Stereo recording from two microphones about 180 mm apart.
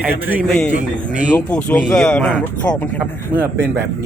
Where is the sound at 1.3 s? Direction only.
5° left (ahead or behind).